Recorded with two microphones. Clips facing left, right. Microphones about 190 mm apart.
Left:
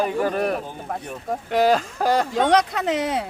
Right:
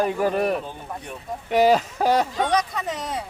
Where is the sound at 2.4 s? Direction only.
70° left (ahead or behind).